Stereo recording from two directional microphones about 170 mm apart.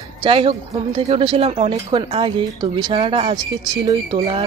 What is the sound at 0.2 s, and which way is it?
Speech, 30° right (ahead or behind).